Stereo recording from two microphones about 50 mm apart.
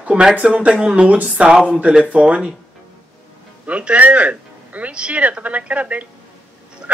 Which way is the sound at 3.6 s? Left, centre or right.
Right.